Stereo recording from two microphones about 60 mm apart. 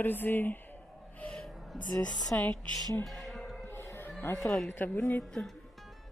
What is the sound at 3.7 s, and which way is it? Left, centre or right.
Music, left.